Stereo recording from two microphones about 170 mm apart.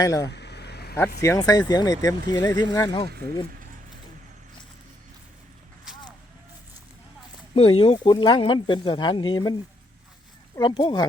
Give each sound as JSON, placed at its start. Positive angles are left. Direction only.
{"t": 0.0, "sound": "speech", "side_deg": 20}
{"t": 0.3, "sound": "a sound", "side_deg": 85}
{"t": 1.2, "sound": "speech", "side_deg": 20}
{"t": 7.5, "sound": "speech", "side_deg": 35}